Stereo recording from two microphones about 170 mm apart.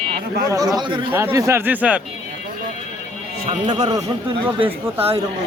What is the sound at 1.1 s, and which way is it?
Speech, 10° right (ahead or behind).